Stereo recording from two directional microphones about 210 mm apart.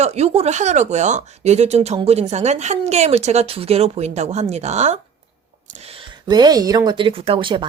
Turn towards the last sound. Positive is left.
turn(degrees=-25)  # may be behind; listen again after turning